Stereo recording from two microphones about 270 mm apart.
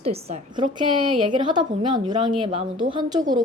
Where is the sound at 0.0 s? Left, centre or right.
Right.